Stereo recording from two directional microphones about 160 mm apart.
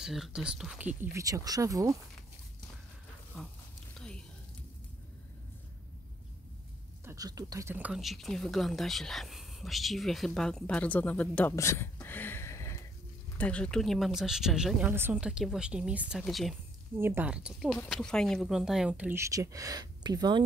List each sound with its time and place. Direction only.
0.0 s speech: 5° right (ahead or behind)
1.1 s speech: 20° right (ahead or behind)
7.1 s speech: 20° right (ahead or behind); by 16.5 s centre (ahead or behind)
16.9 s speech: 15° right (ahead or behind)